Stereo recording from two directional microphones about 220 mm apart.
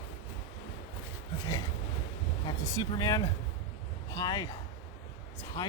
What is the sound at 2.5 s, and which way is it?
Speech, 15° left (ahead or behind).